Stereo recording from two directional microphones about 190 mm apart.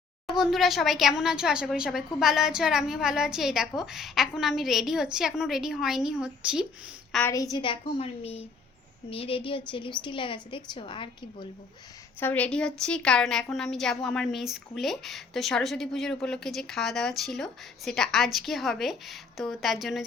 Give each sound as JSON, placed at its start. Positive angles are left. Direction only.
{"t": 0.3, "sound": "a woman's voice", "side_deg": 0}
{"t": 7.2, "sound": "a woman's voice", "side_deg": 15}
{"t": 7.5, "sound": "a woman's voice", "side_deg": 25}
{"t": 12.2, "sound": "a woman's voice", "side_deg": 10}